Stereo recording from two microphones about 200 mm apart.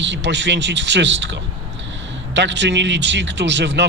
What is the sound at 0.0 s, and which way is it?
Speech, 65° right (ahead or behind).